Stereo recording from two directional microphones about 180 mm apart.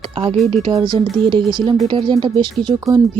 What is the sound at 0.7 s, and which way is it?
Speech, 25° right (ahead or behind).